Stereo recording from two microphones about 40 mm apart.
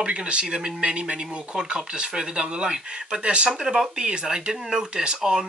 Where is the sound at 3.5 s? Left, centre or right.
Centre.